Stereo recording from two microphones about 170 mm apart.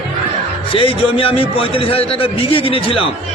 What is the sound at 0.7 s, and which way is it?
A man's voice, 30° left (ahead or behind).